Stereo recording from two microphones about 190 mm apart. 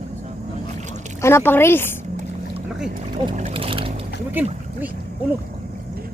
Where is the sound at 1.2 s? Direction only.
15° left (ahead or behind).